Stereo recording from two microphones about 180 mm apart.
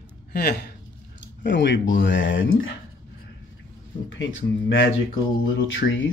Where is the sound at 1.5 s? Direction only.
80° left.